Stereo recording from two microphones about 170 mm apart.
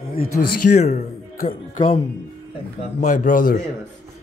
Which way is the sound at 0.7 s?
40° left (ahead or behind).